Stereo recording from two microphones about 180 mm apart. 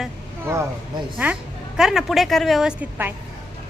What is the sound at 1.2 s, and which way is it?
A woman's voice, 10° right (ahead or behind).